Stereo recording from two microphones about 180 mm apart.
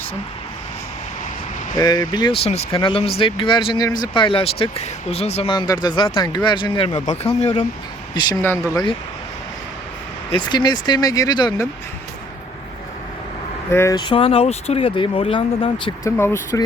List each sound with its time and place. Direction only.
1.7 s speech: 20° left (ahead or behind); by 7.6 s 35° left (ahead or behind)
8.1 s speech: 25° left (ahead or behind)
8.4 s speech: 15° left (ahead or behind)
10.3 s speech: 25° left (ahead or behind)
13.7 s speech: 15° left (ahead or behind)
16.0 s speech: 15° left (ahead or behind)